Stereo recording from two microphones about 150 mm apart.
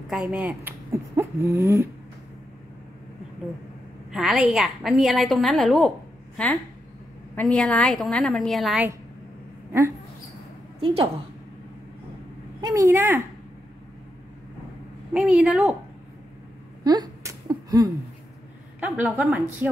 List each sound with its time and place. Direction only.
0.1 s speech: 10° right (ahead or behind)
4.1 s a woman's voice: 5° right (ahead or behind)
9.7 s speech: 20° right (ahead or behind)
12.5 s a woman's voice: 25° right (ahead or behind)
15.1 s a woman's voice: 5° right (ahead or behind)
16.8 s a sound: 25° right (ahead or behind)
18.8 s a woman's voice: 10° right (ahead or behind)